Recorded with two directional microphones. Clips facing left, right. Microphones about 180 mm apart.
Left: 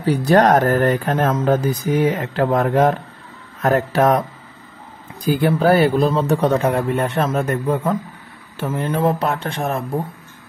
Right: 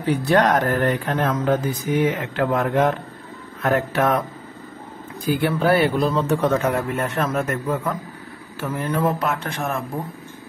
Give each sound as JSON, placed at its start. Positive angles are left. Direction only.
{"t": 0.0, "sound": "speech", "side_deg": 40}
{"t": 5.2, "sound": "speech", "side_deg": 40}